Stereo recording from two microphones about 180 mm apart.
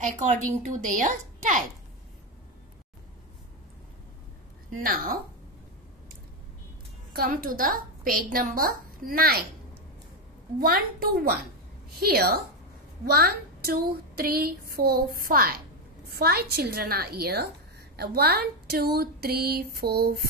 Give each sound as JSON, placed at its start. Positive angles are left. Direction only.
{"t": 0.6, "sound": "a woman's voice", "side_deg": -45}
{"t": 4.7, "sound": "a woman's voice", "side_deg": -55}
{"t": 7.2, "sound": "a woman's voice", "side_deg": -55}
{"t": 10.6, "sound": "a woman's voice", "side_deg": -55}